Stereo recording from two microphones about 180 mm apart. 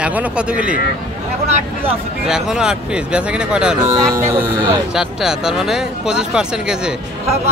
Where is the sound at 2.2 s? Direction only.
Centre (ahead or behind).